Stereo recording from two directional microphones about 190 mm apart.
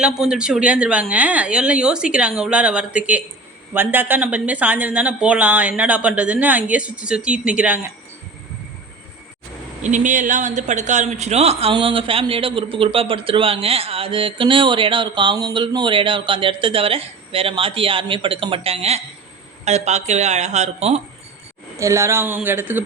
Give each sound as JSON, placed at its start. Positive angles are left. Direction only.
{"t": 0.0, "sound": "a woman's voice", "side_deg": -5}
{"t": 9.8, "sound": "speech", "side_deg": -40}
{"t": 21.8, "sound": "speech", "side_deg": -15}